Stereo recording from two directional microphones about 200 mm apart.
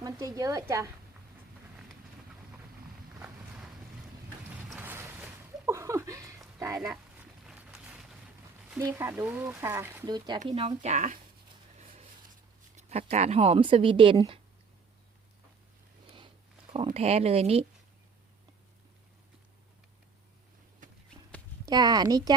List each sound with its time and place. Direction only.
0.0 s speech: 15° right (ahead or behind)
4.8 s a sound: 10° right (ahead or behind)
7.4 s a sound: 5° right (ahead or behind)
8.8 s speech: 15° right (ahead or behind)
10.4 s speech: 30° right (ahead or behind)
12.7 s speech: 35° right (ahead or behind)
16.7 s speech: 30° right (ahead or behind)
21.7 s speech: 20° right (ahead or behind)